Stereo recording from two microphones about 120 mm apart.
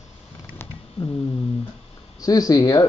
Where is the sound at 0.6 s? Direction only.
20° left (ahead or behind).